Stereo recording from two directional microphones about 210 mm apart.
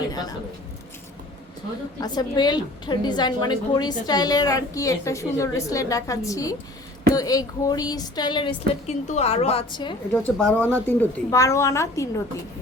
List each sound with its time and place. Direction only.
0.1 s a woman's voice: 20° left (ahead or behind)
2.0 s a woman's voice: 20° left (ahead or behind)
10.1 s a woman's voice: 5° left (ahead or behind)